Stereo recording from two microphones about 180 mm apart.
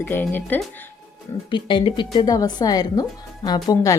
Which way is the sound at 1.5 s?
25° left (ahead or behind).